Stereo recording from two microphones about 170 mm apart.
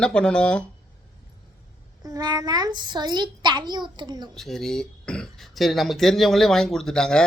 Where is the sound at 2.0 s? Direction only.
20° right (ahead or behind).